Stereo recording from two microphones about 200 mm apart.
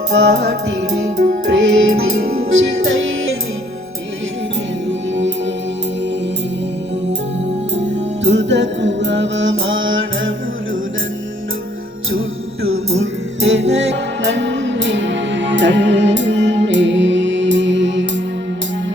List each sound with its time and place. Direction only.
0.1 s music: 60° right (ahead or behind)
2.8 s music: 75° right (ahead or behind)
4.9 s music: 65° right (ahead or behind)
7.7 s music: 60° right (ahead or behind); by 10.8 s 75° right (ahead or behind)
12.6 s music: 90° right; by 18.2 s 65° right (ahead or behind)